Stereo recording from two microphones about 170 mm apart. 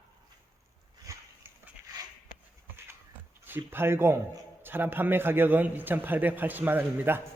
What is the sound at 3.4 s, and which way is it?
A man's voice, 10° right (ahead or behind).